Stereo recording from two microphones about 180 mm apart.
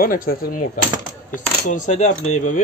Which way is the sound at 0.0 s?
50° left (ahead or behind).